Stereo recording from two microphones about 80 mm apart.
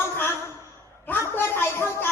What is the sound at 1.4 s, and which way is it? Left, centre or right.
Speech, left.